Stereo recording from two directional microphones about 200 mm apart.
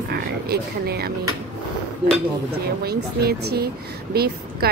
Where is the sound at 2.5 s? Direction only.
55° right (ahead or behind).